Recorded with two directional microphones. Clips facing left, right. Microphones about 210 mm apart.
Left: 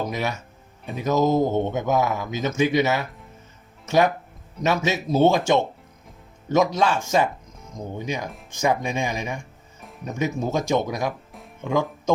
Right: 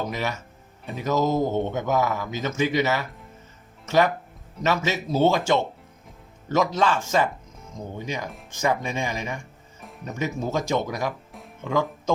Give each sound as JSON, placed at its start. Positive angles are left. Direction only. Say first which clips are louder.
{"t": 0.1, "sound": "speech", "louder": "left 2 dB", "side_deg": 15}
{"t": 11.3, "sound": "music", "louder": "even", "side_deg": 0}
{"t": 11.6, "sound": "speech", "louder": "left 2 dB", "side_deg": 15}